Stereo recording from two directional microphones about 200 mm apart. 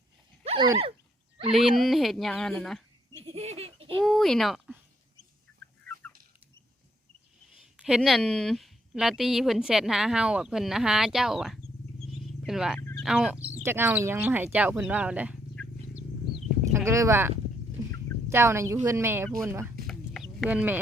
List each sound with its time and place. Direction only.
0.4 s dog: 25° right (ahead or behind)
1.5 s a woman's voice: centre (ahead or behind)
3.2 s baby laughter: 30° right (ahead or behind)
4.0 s speech: centre (ahead or behind)
7.8 s a woman's voice: 5° right (ahead or behind)
15.6 s vehicle: 5° left (ahead or behind)
16.7 s speech: 15° right (ahead or behind)
17.8 s fowl: 15° right (ahead or behind)
18.3 s speech: 15° right (ahead or behind)
19.9 s chicken: centre (ahead or behind)